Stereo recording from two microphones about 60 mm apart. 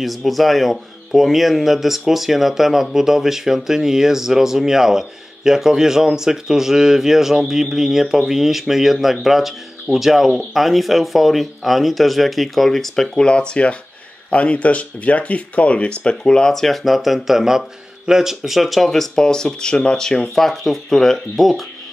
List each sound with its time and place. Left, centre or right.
0.0 s speech: centre